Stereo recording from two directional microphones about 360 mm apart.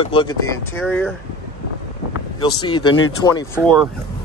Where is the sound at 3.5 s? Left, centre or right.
Centre.